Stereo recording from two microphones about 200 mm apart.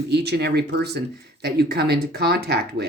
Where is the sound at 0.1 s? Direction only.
55° right (ahead or behind).